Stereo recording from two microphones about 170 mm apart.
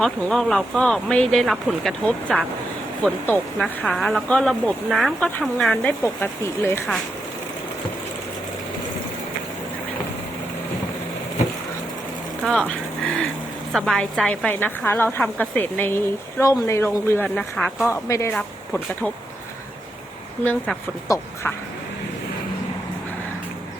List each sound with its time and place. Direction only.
0.0 s speech: 5° left (ahead or behind)
3.0 s a woman's voice: 10° left (ahead or behind)
12.4 s a sound: 5° left (ahead or behind)
13.7 s a woman's voice: 5° left (ahead or behind)
17.2 s speech: centre (ahead or behind)
17.8 s a woman's voice: 15° left (ahead or behind)
18.3 s speech: 5° left (ahead or behind)
20.4 s a woman's voice: 10° left (ahead or behind)
21.1 s speech: 20° left (ahead or behind)